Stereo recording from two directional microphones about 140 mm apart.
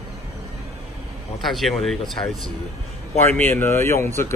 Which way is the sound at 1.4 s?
Centre (ahead or behind).